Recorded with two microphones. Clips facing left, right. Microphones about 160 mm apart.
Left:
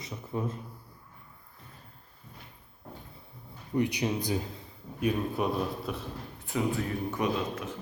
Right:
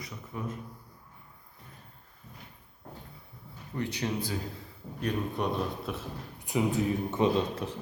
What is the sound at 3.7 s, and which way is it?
Speech, 15° left (ahead or behind).